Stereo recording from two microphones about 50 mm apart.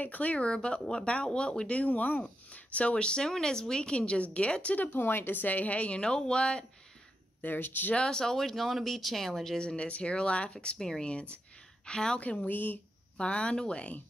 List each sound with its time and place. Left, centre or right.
0.0 s a woman's voice: left
4.7 s a woman's voice: left; by 6.6 s centre
7.4 s speech: left
7.9 s speech: centre
9.6 s a woman's voice: centre
12.4 s speech: left
13.2 s a woman's voice: left